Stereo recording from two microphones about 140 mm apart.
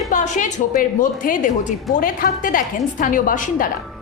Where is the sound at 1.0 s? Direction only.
75° left (ahead or behind).